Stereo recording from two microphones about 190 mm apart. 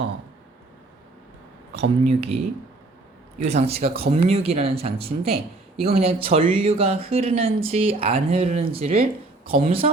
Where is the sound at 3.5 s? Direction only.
35° right (ahead or behind).